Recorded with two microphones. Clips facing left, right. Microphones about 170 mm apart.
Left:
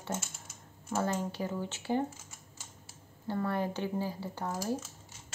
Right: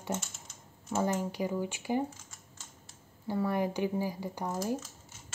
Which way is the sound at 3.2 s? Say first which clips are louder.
Right 2 dB; 10° right (ahead or behind).